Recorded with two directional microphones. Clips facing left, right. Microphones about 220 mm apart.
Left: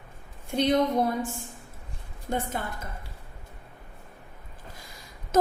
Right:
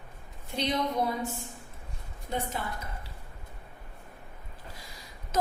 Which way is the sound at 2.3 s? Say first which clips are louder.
Left 4 dB; 50° left (ahead or behind).